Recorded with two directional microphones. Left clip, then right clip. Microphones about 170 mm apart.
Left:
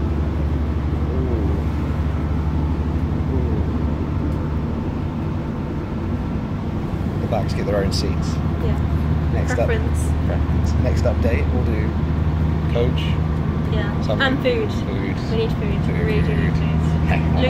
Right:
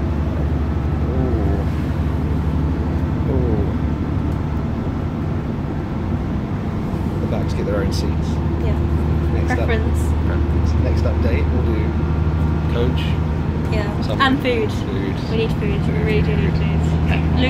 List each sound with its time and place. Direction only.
14.1 s speech: 15° right (ahead or behind)